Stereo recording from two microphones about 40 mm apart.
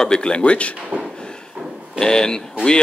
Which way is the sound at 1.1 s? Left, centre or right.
Centre.